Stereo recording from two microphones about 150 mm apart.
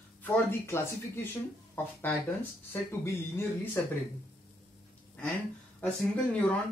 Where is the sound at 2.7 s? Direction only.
15° left (ahead or behind).